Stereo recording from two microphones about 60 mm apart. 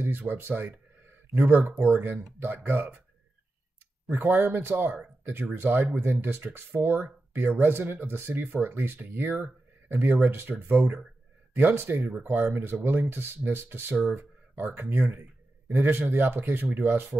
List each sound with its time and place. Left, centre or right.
0.0 s speech: right
4.2 s speech: right